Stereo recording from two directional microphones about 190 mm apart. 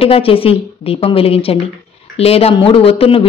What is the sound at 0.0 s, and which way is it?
Speech, 30° left (ahead or behind).